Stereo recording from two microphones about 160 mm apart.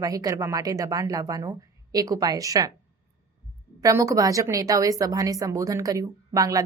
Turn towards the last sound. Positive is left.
turn(degrees=-20)  # may be behind; listen again after turning